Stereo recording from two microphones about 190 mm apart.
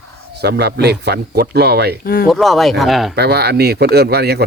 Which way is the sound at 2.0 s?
50° left (ahead or behind).